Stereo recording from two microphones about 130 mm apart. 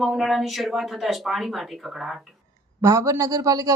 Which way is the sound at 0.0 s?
Centre (ahead or behind).